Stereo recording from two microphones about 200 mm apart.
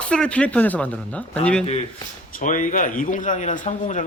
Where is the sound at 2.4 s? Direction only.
40° left (ahead or behind).